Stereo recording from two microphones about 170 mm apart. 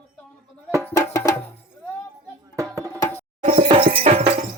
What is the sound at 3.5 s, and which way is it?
Music, 30° right (ahead or behind).